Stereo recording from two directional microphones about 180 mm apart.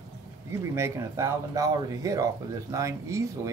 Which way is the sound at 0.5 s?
15° right (ahead or behind).